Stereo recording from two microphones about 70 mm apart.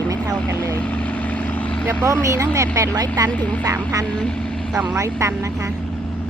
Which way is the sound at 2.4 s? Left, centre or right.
Right.